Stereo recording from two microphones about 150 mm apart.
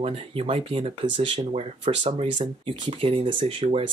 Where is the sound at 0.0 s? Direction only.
40° right (ahead or behind).